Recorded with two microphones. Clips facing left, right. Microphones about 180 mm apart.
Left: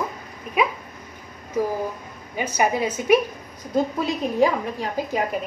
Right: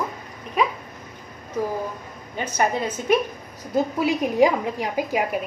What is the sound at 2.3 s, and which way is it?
Speech, 10° left (ahead or behind).